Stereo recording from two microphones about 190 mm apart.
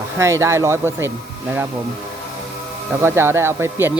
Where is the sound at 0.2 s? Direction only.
15° right (ahead or behind).